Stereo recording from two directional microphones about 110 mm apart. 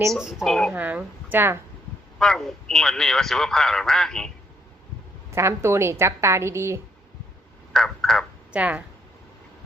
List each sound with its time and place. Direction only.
0.2 s a man's voice: 5° right (ahead or behind)
0.7 s speech: 15° right (ahead or behind)
2.1 s a man's voice: 5° left (ahead or behind)
5.3 s a woman's voice: 25° right (ahead or behind)
7.7 s a sound: 5° left (ahead or behind)
8.5 s speech: 10° right (ahead or behind)